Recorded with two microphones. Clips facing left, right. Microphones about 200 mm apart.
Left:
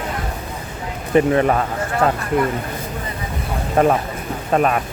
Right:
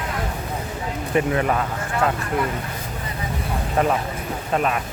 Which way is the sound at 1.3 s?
45° left (ahead or behind).